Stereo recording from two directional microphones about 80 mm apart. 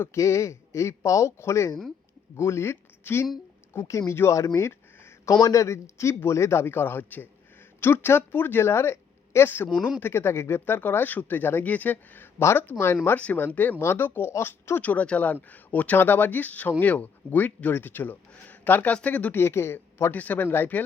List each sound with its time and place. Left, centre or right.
0.0 s speech: left
5.3 s speech: left
14.8 s speech: centre